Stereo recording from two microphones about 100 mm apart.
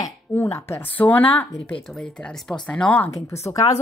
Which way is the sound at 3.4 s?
35° left (ahead or behind).